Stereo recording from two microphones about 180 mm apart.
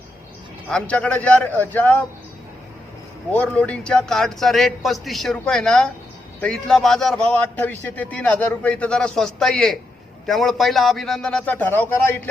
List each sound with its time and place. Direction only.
0.7 s a man's voice: 5° left (ahead or behind)
3.3 s a man's voice: 5° left (ahead or behind)